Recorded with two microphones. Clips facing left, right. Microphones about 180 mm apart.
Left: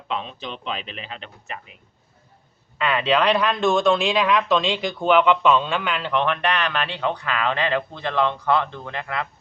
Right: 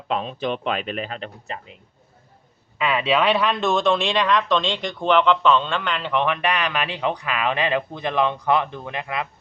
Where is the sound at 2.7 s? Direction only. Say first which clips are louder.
Even; 5° right (ahead or behind).